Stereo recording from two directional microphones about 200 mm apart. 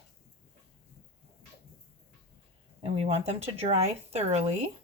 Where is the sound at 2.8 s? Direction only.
30° right (ahead or behind).